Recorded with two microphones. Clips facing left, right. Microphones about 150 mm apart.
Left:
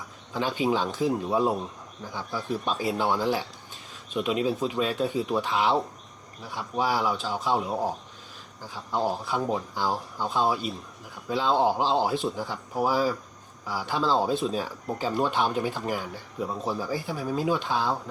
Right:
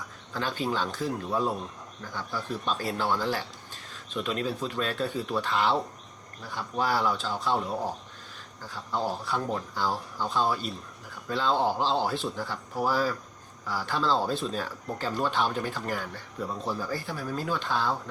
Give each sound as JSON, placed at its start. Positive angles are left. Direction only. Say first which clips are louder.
{"t": 0.3, "sound": "speech", "louder": "left 4 dB", "side_deg": 5}